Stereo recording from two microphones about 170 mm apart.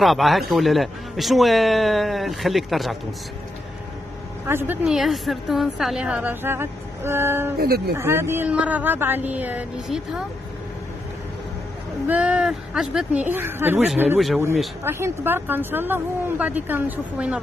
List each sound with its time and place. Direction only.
0.0 s a man's voice: centre (ahead or behind)
4.5 s a woman's voice: 10° right (ahead or behind)
7.5 s speech: 65° right (ahead or behind)
8.0 s a woman's voice: 15° right (ahead or behind)
12.1 s a woman's voice: 5° right (ahead or behind)